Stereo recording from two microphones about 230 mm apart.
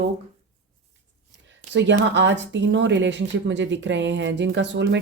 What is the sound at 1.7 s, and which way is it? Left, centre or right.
Speech, right.